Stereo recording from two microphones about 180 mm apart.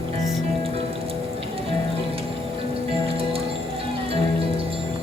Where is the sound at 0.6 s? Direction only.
30° right (ahead or behind).